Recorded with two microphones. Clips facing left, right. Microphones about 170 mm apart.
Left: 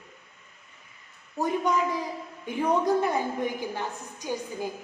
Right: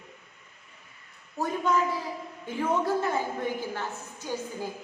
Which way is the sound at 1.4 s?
15° left (ahead or behind).